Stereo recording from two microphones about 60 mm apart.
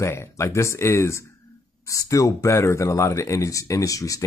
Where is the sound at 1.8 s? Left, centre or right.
Left.